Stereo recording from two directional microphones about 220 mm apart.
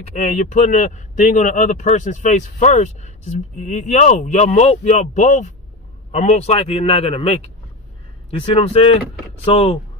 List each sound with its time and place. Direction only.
0.0 s speech: 30° left (ahead or behind)